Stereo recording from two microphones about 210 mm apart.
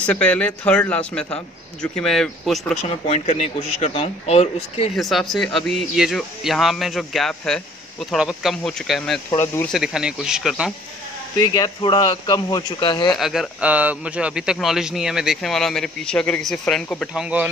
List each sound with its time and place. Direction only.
0.0 s speech: 5° left (ahead or behind)
2.8 s speech: 30° left (ahead or behind)
4.9 s speech: centre (ahead or behind)
9.8 s speech: 5° right (ahead or behind)
11.3 s speech: 15° left (ahead or behind)
13.2 s speech: centre (ahead or behind)